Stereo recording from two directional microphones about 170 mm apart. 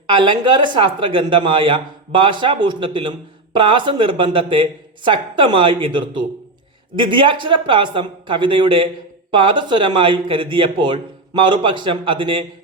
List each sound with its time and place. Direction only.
0.1 s speech: 30° right (ahead or behind)